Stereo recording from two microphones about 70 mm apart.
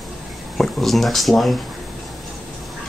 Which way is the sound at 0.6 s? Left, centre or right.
Centre.